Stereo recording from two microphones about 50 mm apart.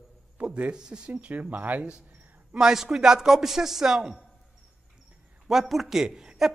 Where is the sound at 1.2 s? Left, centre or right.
Right.